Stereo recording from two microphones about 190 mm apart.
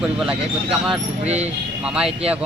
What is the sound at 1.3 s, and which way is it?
Speech, 35° right (ahead or behind).